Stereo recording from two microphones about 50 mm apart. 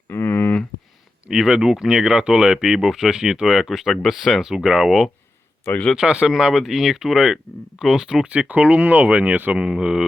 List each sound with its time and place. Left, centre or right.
0.3 s a sound: left
1.3 s speech: centre
2.6 s speech: centre
6.0 s speech: centre
8.3 s speech: right
9.6 s speech: centre